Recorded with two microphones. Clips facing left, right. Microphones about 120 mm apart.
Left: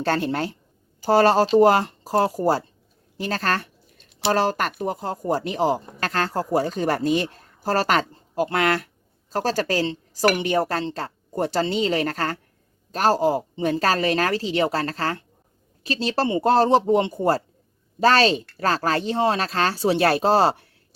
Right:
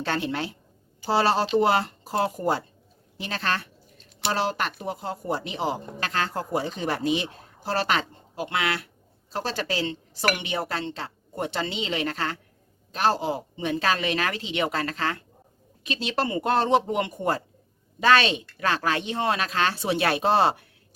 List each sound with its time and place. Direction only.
0.0 s a woman's voice: 40° left (ahead or behind)